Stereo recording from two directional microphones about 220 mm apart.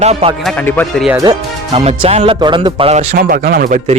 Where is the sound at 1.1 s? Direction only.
20° right (ahead or behind).